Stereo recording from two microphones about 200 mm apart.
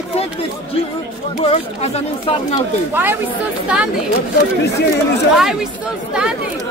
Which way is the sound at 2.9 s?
10° right (ahead or behind).